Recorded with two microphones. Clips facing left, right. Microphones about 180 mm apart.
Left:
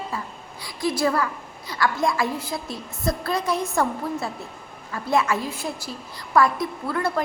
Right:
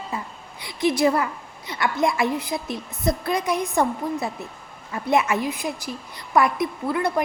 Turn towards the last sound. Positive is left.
turn(degrees=-15)  # may be behind; listen again after turning